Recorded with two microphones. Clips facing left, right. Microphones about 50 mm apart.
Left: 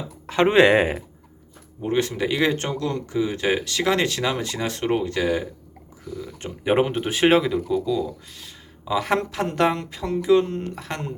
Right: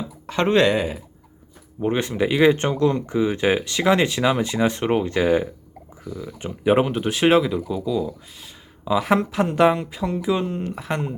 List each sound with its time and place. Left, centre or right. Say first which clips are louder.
0.3 s speech: left 2 dB; centre
0.7 s speech: left 4 dB; left
1.8 s speech: right 1 dB; centre
6.1 s speech: right 1 dB; centre
6.7 s speech: right 2 dB; centre